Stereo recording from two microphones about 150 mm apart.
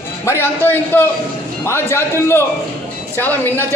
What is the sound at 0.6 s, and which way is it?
A man's voice, 10° left (ahead or behind).